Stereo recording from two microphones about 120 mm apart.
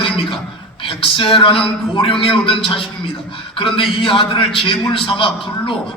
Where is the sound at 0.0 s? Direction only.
45° left (ahead or behind).